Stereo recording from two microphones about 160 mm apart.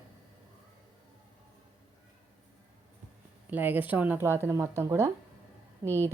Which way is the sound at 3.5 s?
10° right (ahead or behind).